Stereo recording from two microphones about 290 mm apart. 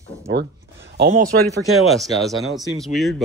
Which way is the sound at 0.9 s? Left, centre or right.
Right.